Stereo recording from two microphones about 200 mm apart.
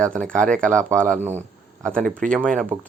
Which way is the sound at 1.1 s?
35° right (ahead or behind).